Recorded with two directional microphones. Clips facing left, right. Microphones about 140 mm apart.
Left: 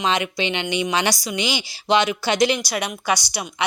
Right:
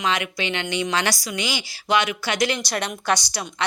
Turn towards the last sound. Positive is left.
turn(degrees=10)  # may be behind; listen again after turning